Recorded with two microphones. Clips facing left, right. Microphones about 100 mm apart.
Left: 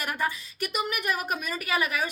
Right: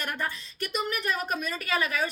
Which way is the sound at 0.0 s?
10° left (ahead or behind).